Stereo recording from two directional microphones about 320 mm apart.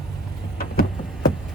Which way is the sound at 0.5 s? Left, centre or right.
Left.